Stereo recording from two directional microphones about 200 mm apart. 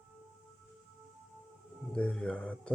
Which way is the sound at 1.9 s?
5° left (ahead or behind).